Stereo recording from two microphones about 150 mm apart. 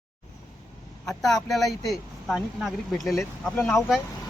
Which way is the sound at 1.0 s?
Centre (ahead or behind).